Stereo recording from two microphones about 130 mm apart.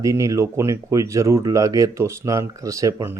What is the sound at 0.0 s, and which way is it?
Speech, 25° right (ahead or behind).